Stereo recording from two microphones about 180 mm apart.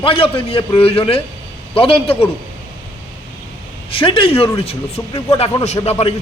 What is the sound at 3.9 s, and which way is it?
A man's voice, 30° left (ahead or behind).